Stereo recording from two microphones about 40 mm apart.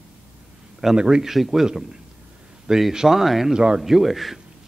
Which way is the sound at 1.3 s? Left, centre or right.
Centre.